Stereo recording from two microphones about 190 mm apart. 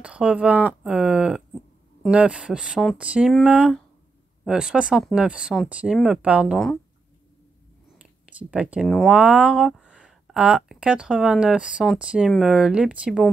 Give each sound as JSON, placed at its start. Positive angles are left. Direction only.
{"t": 0.0, "sound": "speech", "side_deg": -5}
{"t": 8.0, "sound": "a sound", "side_deg": -5}
{"t": 8.8, "sound": "speech", "side_deg": 0}